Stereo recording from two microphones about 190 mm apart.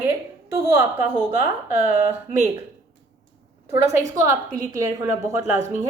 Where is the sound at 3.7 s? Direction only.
15° right (ahead or behind).